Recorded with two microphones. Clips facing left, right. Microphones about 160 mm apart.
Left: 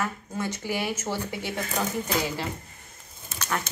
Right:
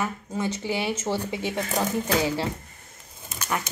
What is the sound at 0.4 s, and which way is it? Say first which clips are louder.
Speech: right 2 dB; 20° right (ahead or behind).